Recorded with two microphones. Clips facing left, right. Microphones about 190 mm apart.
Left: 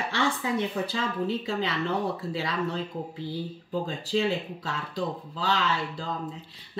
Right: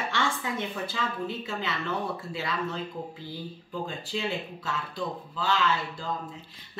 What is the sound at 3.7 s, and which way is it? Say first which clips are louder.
Speech: left 6 dB; 35° left (ahead or behind).